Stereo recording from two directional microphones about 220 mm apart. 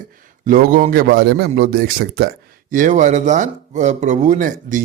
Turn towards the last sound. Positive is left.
turn(degrees=-35)  # may be behind; listen again after turning